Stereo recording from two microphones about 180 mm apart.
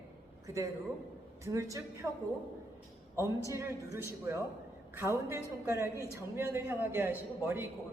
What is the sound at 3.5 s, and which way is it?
A man's voice, 15° right (ahead or behind).